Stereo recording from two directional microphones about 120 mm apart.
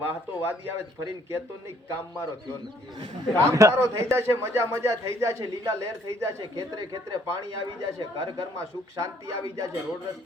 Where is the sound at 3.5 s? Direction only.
25° right (ahead or behind).